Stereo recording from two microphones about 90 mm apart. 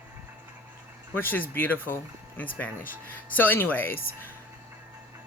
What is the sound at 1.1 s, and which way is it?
Speech, 20° left (ahead or behind).